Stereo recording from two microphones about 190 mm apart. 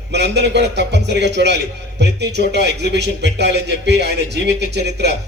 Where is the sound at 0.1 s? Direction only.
65° right (ahead or behind).